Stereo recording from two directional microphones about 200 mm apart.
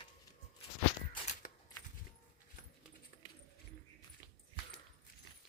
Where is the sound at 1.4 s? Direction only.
40° left (ahead or behind).